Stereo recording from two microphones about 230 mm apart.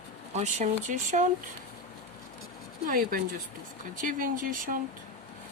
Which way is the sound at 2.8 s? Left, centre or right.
Right.